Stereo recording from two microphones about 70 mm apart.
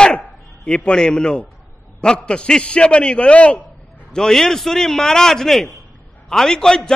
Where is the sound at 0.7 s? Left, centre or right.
Centre.